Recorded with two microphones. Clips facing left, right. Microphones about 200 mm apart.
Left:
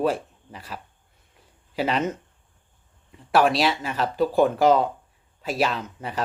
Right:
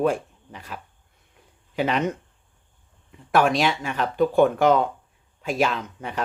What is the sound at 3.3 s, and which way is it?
Speech, centre (ahead or behind).